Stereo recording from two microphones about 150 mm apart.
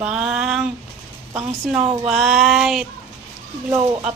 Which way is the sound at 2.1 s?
Centre (ahead or behind).